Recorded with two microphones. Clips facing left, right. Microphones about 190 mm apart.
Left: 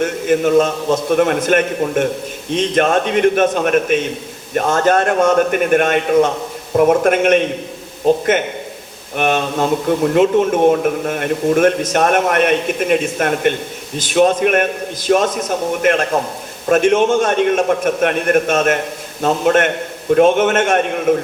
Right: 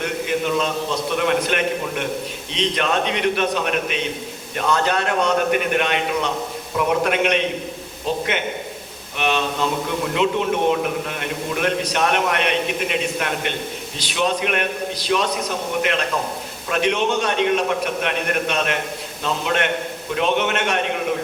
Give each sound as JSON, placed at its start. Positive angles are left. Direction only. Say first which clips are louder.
{"t": 0.0, "sound": "a man's voice", "louder": "left 7 dB", "side_deg": 45}